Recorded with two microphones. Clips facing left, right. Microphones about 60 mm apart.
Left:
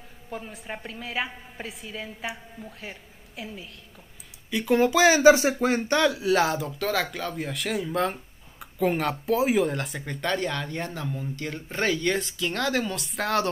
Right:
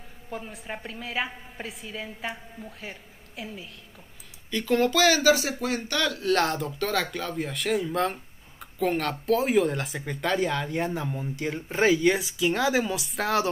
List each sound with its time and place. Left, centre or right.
0.3 s speech: centre
4.5 s speech: centre
6.1 s speech: centre